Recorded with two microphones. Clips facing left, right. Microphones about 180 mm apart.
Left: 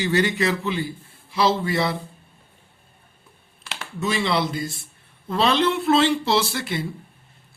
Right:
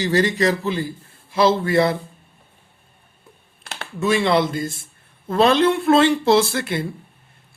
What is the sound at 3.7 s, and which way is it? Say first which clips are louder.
Speech: right 5 dB; 55° right (ahead or behind).